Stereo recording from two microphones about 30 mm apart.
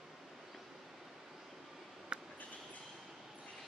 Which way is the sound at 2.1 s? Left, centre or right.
Right.